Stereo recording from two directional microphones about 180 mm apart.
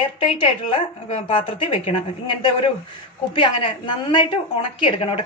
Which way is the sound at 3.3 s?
25° left (ahead or behind).